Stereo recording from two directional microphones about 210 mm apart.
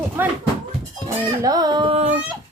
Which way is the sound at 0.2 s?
10° right (ahead or behind).